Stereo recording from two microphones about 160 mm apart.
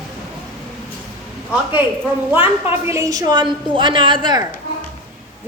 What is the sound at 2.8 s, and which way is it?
A woman's voice, 20° right (ahead or behind).